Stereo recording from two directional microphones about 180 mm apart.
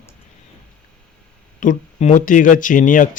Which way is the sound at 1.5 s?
45° left (ahead or behind).